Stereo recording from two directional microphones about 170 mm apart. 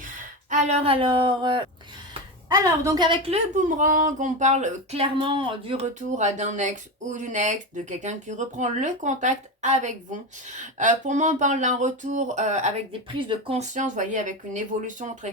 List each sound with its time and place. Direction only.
0.5 s a woman's voice: 40° right (ahead or behind)
6.1 s speech: 45° right (ahead or behind)
13.1 s speech: 30° right (ahead or behind)
13.6 s speech: 45° right (ahead or behind)